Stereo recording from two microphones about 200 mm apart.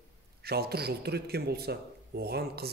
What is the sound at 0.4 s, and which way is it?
A man's voice, 50° right (ahead or behind).